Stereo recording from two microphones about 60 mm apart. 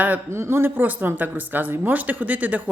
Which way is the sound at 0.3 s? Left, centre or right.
Right.